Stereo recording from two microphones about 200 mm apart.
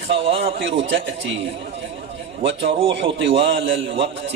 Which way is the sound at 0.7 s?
65° right (ahead or behind).